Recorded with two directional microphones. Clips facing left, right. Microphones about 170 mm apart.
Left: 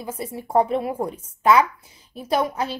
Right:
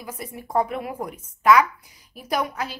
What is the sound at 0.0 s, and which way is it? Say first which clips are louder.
A woman's voice: left 5 dB; 25° left (ahead or behind).